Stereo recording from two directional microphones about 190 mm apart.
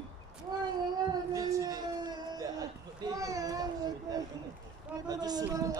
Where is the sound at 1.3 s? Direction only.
15° right (ahead or behind).